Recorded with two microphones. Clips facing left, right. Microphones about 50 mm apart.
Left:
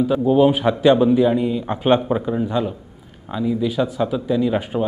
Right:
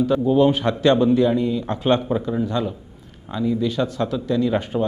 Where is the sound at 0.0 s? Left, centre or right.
Centre.